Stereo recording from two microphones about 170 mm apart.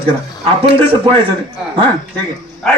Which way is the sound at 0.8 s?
35° right (ahead or behind).